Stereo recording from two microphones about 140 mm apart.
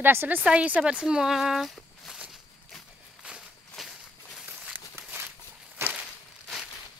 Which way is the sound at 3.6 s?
Centre (ahead or behind).